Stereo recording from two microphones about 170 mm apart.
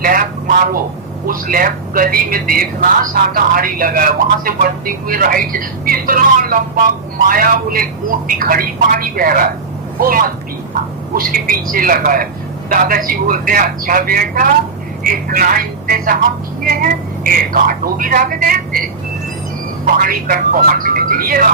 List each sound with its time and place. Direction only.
0.0 s a sound: 55° right (ahead or behind)
1.3 s a man's voice: 55° right (ahead or behind)
19.8 s a man's voice: 55° right (ahead or behind)